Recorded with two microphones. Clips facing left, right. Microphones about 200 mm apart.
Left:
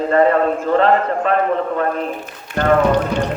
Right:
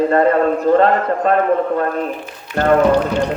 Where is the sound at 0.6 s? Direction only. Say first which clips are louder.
Right 2 dB; 40° right (ahead or behind).